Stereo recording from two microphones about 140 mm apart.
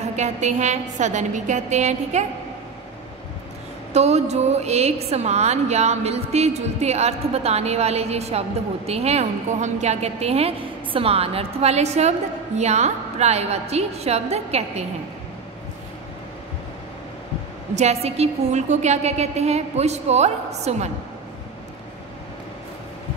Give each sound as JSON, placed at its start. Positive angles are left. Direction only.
{"t": 0.0, "sound": "a woman's voice", "side_deg": -55}
{"t": 3.9, "sound": "a woman's voice", "side_deg": -50}
{"t": 17.7, "sound": "a woman's voice", "side_deg": -50}